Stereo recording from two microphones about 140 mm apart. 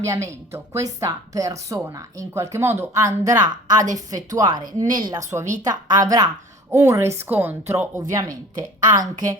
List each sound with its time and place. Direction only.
0.0 s speech: 20° right (ahead or behind)